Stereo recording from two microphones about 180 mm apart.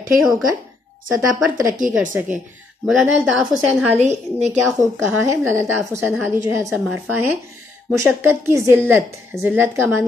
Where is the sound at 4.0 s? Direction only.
40° right (ahead or behind).